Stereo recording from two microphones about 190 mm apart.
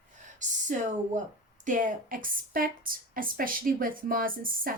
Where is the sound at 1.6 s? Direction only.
45° right (ahead or behind).